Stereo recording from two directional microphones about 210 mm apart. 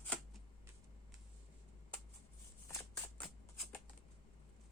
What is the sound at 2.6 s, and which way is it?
Shuffling cards, 10° left (ahead or behind).